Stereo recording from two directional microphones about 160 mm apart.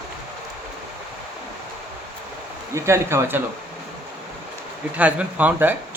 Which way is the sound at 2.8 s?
15° right (ahead or behind).